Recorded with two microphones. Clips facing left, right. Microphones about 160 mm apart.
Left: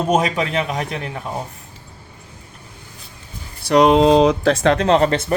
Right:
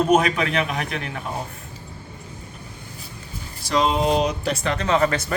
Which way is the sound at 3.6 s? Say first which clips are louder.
Left 8 dB; 65° left (ahead or behind).